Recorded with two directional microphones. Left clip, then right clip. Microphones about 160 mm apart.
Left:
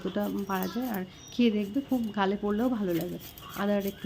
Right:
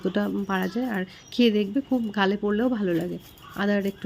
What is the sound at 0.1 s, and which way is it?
Speech, 25° right (ahead or behind).